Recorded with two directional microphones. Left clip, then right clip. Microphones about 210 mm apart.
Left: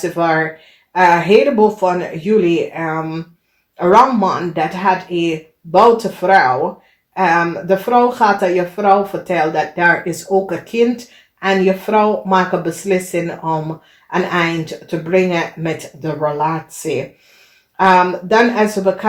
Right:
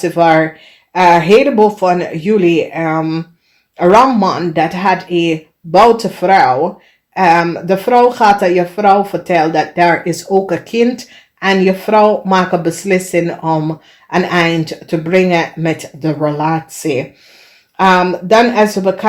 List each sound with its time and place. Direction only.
0.0 s speech: 45° right (ahead or behind)